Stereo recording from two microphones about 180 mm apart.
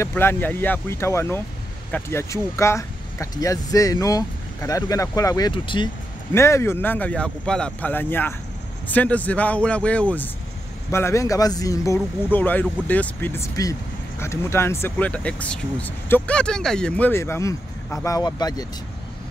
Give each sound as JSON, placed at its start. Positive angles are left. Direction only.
{"t": 0.0, "sound": "speech", "side_deg": 15}
{"t": 6.3, "sound": "speech", "side_deg": 15}